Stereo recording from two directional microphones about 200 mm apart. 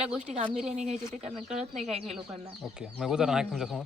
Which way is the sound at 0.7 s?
35° right (ahead or behind).